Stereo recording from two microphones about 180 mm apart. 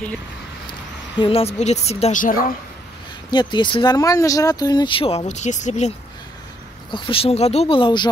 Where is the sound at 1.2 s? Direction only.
35° left (ahead or behind); by 2.5 s 50° left (ahead or behind).